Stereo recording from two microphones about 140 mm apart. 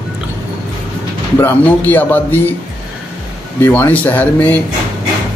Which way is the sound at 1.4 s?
15° left (ahead or behind).